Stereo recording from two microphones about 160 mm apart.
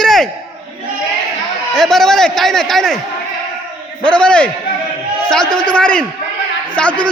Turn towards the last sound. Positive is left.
turn(degrees=5)  # may be behind; listen again after turning